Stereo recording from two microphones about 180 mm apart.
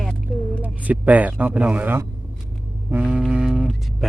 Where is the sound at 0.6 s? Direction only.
10° right (ahead or behind).